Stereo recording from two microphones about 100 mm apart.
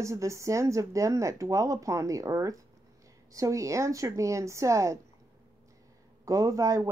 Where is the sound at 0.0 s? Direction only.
30° right (ahead or behind).